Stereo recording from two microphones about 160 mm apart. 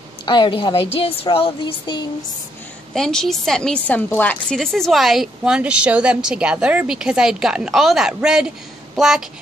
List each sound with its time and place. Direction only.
0.2 s a woman's voice: 30° left (ahead or behind)
2.9 s a woman's voice: 5° left (ahead or behind)